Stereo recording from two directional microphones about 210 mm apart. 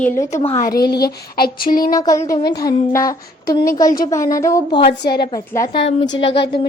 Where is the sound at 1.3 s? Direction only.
45° left (ahead or behind).